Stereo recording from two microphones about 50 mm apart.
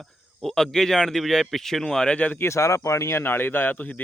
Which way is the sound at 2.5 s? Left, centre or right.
Left.